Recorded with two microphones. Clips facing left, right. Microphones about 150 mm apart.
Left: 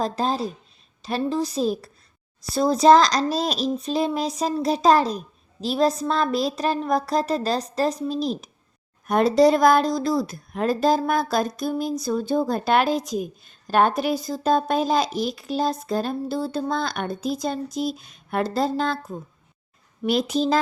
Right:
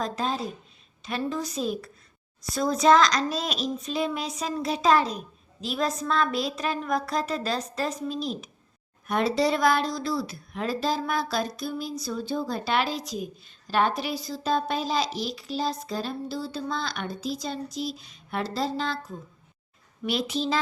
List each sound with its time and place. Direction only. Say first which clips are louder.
0.0 s a child's voice: left 5 dB; 35° left (ahead or behind)